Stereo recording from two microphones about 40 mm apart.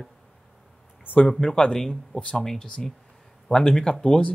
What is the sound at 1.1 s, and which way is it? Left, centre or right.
Speech, left.